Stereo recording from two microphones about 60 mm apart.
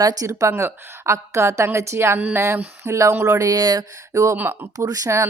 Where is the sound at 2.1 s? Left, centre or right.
Right.